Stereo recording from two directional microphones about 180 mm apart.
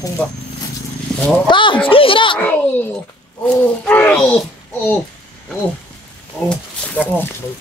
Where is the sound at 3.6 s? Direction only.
10° left (ahead or behind).